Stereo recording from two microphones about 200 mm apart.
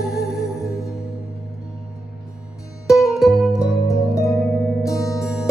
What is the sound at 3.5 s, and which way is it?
Music, 15° left (ahead or behind).